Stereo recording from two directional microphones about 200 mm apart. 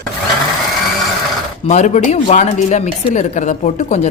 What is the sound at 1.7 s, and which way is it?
Speech, 35° left (ahead or behind).